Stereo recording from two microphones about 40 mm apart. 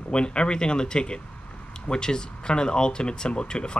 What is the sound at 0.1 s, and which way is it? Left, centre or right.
Speech, left.